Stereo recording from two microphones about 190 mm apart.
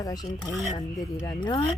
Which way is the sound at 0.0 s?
20° left (ahead or behind).